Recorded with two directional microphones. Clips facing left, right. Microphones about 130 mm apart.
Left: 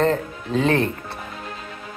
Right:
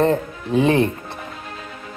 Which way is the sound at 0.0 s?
15° right (ahead or behind).